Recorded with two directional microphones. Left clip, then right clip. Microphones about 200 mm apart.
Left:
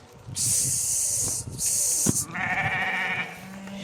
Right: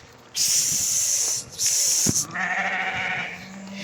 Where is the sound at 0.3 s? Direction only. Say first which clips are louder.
Right 6 dB; 20° left (ahead or behind).